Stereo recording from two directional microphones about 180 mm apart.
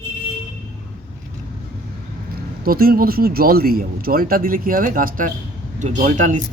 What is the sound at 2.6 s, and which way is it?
Speech, 55° right (ahead or behind).